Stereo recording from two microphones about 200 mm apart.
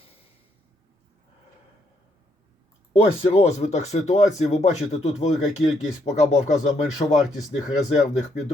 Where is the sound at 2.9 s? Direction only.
30° left (ahead or behind).